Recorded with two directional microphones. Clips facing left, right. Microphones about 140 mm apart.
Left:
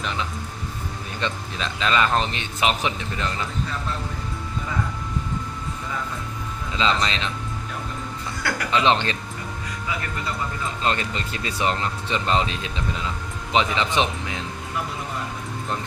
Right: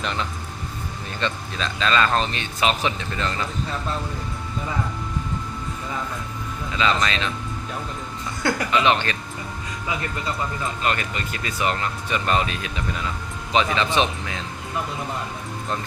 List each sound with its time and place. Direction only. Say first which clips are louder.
0.0 s speech: right 1 dB; centre (ahead or behind)
1.2 s speech: right 1 dB; 15° left (ahead or behind)
6.7 s speech: right 1 dB; 20° left (ahead or behind)
8.4 s speech: right 5 dB; 20° right (ahead or behind)
8.8 s speech: left 2 dB; 25° left (ahead or behind)
10.8 s speech: left 1 dB; 30° left (ahead or behind)